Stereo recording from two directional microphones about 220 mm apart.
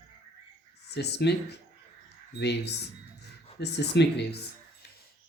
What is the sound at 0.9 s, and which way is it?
Speech, 50° left (ahead or behind).